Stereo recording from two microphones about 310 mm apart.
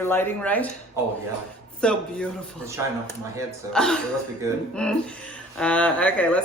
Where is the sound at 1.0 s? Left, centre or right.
Centre.